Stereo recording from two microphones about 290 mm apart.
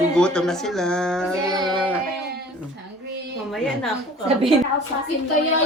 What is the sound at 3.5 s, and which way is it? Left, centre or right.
Speech, centre.